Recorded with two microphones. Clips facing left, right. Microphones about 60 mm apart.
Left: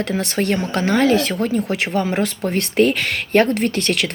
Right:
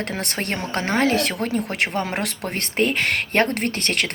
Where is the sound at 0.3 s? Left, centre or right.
Right.